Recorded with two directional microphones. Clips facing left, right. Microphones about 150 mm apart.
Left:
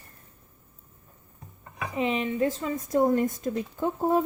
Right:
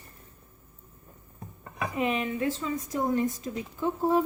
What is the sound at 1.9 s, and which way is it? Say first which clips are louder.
Speech: left 2 dB; 25° left (ahead or behind).